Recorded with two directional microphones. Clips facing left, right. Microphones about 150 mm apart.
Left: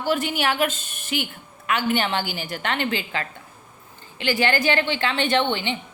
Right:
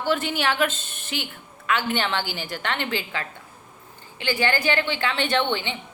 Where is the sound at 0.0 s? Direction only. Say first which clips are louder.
Left 1 dB; 15° left (ahead or behind).